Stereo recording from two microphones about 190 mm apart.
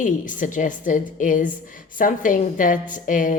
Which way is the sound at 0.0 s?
45° left (ahead or behind).